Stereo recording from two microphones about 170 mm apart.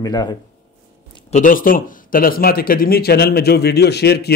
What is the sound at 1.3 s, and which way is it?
A man's voice, 55° left (ahead or behind).